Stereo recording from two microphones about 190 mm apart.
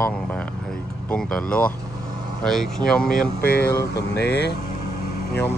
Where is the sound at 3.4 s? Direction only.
55° left (ahead or behind).